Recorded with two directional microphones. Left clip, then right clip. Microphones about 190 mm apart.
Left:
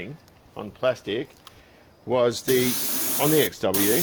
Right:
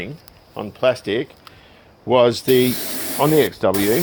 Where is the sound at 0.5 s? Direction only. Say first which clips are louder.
Right 6 dB; 50° right (ahead or behind).